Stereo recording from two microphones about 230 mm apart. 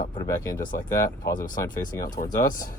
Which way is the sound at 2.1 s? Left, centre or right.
Left.